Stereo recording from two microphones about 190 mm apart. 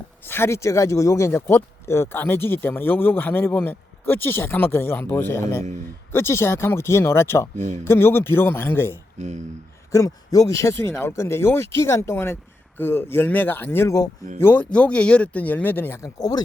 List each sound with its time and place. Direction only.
0.3 s speech: 10° left (ahead or behind)
9.1 s speech: 40° right (ahead or behind)
9.9 s speech: 15° left (ahead or behind)